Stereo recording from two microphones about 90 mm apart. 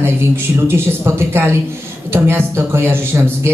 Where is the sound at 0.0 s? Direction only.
25° right (ahead or behind).